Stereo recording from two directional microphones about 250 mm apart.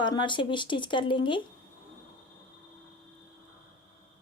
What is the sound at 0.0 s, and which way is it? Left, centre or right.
Speech, centre.